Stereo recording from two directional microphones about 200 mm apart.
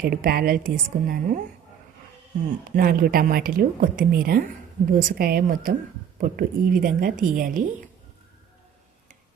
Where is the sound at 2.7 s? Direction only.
45° right (ahead or behind).